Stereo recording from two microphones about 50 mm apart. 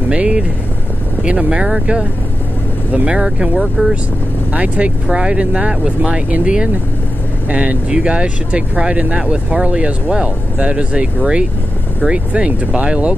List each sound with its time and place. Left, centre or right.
0.1 s speech: right
3.3 s speech: centre
4.5 s speech: right